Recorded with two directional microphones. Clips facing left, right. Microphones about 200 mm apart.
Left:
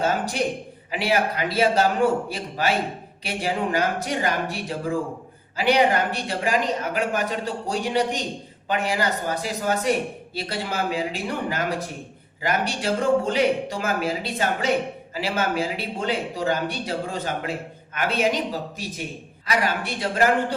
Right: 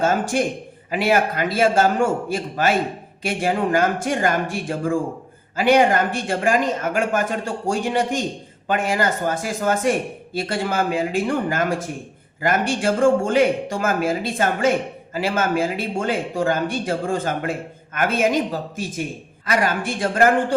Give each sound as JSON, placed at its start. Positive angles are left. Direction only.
{"t": 0.0, "sound": "speech", "side_deg": -50}
{"t": 19.5, "sound": "speech", "side_deg": -50}